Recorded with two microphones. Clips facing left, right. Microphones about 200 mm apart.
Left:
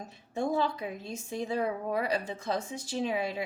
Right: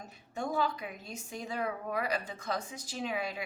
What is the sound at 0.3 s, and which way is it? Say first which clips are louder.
A woman's voice: left 3 dB; 25° left (ahead or behind).